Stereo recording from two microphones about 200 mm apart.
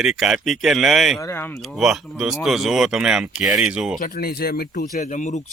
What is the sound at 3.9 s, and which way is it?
Speech, 45° left (ahead or behind).